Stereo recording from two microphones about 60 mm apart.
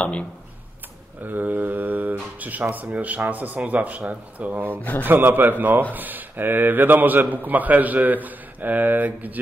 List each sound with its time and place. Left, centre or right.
0.0 s speech: left
1.2 s mantra: right
2.7 s a man's voice: right
4.6 s speech: left
5.0 s a man's voice: right